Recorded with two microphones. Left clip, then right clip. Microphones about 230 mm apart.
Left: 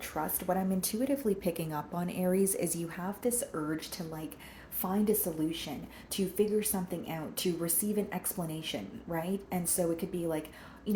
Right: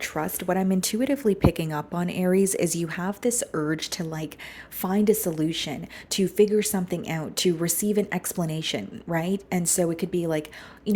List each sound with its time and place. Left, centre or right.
0.0 s a woman's voice: right